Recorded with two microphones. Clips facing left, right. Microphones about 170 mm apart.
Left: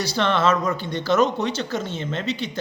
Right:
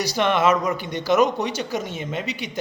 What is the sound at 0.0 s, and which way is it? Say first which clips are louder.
A man's voice: right 1 dB; 15° right (ahead or behind).